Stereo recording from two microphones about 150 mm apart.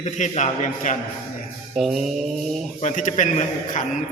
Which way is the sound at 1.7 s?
Centre (ahead or behind).